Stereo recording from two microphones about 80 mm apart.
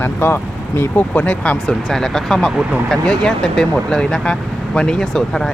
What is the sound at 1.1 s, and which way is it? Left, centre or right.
Speech, centre.